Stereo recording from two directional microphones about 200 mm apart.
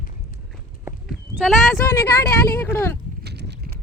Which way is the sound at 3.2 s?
55° right (ahead or behind).